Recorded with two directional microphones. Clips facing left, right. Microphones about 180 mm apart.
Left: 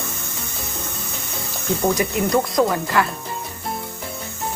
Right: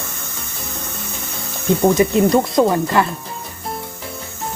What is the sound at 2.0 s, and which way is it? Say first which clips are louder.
Cricket: right 6 dB; 25° right (ahead or behind).